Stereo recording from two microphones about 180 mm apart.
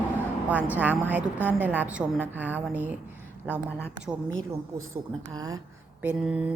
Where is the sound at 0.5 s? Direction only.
10° right (ahead or behind).